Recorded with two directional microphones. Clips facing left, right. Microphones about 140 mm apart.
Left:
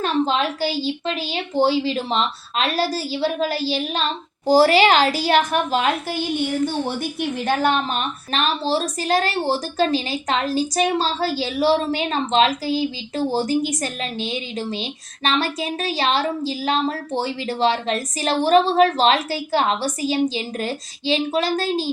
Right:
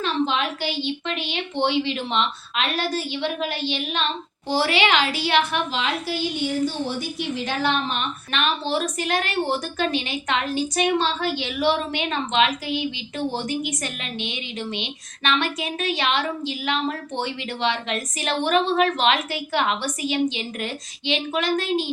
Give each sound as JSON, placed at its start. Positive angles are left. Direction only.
{"t": 0.0, "sound": "a woman's voice", "side_deg": 40}